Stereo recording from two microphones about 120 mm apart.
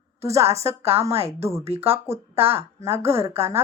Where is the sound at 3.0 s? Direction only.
20° right (ahead or behind).